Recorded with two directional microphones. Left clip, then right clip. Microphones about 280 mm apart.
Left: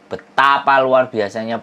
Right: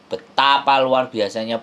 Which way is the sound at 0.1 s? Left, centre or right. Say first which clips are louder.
Left 2 dB; centre.